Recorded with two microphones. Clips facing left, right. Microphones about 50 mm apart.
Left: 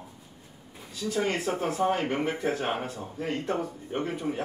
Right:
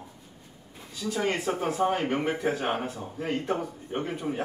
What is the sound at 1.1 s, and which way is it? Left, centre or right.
Speech, centre.